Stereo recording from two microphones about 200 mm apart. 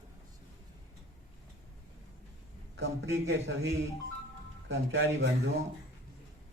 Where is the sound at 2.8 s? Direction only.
80° right.